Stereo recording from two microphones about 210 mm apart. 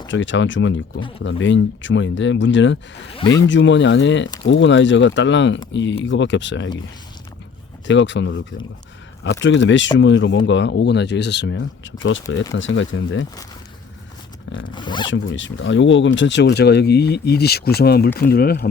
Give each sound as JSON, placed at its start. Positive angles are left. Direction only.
{"t": 0.1, "sound": "speech", "side_deg": 60}
{"t": 3.2, "sound": "speech", "side_deg": 20}
{"t": 3.4, "sound": "speech", "side_deg": 60}
{"t": 7.9, "sound": "speech", "side_deg": 60}
{"t": 14.7, "sound": "speech", "side_deg": 20}
{"t": 15.1, "sound": "speech", "side_deg": 60}